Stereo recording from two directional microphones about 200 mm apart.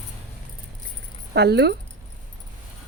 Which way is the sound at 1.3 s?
55° right (ahead or behind).